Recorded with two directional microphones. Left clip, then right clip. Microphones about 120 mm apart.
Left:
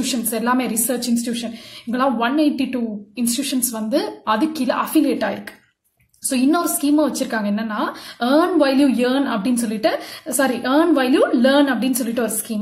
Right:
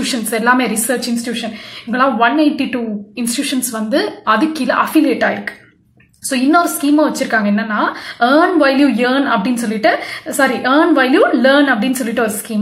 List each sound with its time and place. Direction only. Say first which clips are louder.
0.0 s a woman's voice: right 6 dB; 30° left (ahead or behind)